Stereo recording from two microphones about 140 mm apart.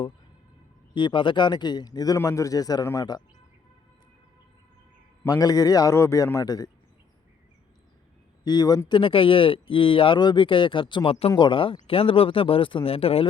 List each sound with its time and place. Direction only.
0.9 s speech: 35° left (ahead or behind)
5.2 s speech: 25° left (ahead or behind)
8.4 s speech: 30° left (ahead or behind)